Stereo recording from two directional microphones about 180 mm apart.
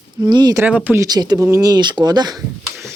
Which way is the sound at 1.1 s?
20° right (ahead or behind).